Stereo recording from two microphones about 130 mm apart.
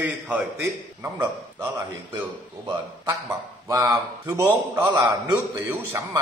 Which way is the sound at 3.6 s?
25° right (ahead or behind).